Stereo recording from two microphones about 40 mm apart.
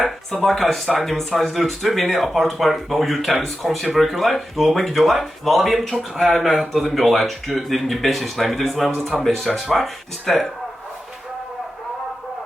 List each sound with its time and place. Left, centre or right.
0.0 s speech: centre